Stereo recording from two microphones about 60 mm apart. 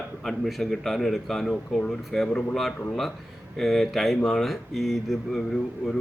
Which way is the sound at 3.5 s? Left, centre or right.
Centre.